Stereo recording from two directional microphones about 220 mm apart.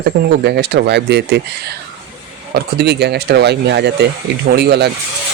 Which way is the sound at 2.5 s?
50° right (ahead or behind).